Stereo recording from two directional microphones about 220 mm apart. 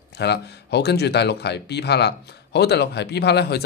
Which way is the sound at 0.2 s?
50° left (ahead or behind).